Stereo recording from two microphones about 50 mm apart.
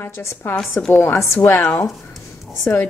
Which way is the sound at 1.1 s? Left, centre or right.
Left.